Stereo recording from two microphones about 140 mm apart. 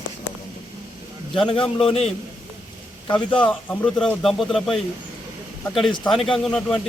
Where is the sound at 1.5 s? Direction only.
40° left (ahead or behind).